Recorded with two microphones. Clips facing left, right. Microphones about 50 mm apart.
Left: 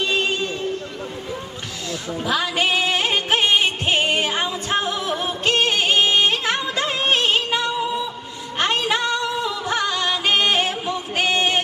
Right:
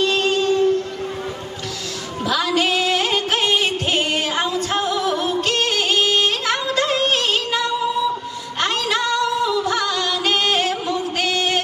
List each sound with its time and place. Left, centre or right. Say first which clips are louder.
0.0 s music: right 4 dB; centre
2.2 s music: right 2 dB; left